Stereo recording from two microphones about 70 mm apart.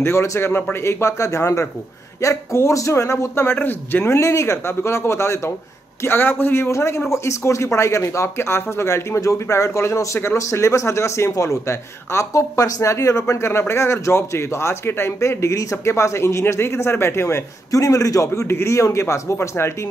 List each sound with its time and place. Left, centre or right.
0.0 s speech: left
17.6 s speech: left